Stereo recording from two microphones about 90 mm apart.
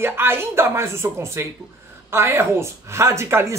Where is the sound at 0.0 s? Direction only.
25° right (ahead or behind).